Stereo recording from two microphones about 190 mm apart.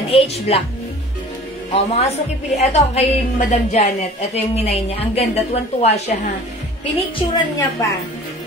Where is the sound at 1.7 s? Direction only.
35° left (ahead or behind).